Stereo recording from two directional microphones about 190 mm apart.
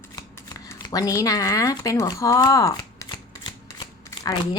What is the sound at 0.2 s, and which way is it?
Speech, 20° left (ahead or behind).